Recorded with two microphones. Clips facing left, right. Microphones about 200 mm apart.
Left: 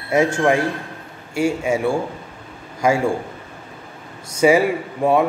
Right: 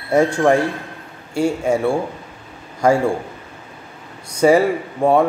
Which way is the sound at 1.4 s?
10° left (ahead or behind).